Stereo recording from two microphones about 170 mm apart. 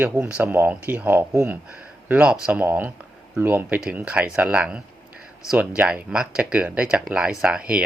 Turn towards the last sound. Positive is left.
turn(degrees=-5)  # may be behind; listen again after turning